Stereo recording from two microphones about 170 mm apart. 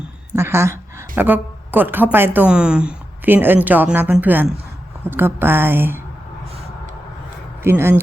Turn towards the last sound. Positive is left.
turn(degrees=-15)  # may be behind; listen again after turning